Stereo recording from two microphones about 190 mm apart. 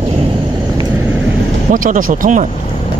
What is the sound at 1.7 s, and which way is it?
Speech, 45° right (ahead or behind).